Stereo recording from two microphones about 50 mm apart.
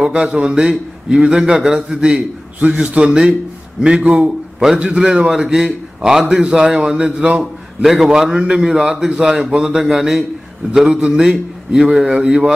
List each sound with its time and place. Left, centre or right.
0.0 s a man's voice: centre
7.8 s a man's voice: centre